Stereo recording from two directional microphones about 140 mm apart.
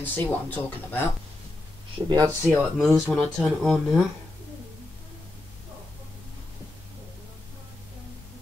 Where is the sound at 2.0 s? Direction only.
35° right (ahead or behind).